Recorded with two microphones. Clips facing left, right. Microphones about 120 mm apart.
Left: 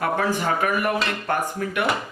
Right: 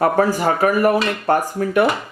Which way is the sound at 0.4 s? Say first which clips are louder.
Right 7 dB; 35° right (ahead or behind).